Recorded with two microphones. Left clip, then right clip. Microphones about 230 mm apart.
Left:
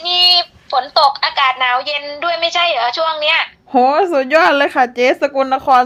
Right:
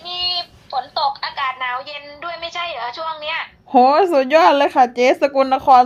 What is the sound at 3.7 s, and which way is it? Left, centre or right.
Speech, centre.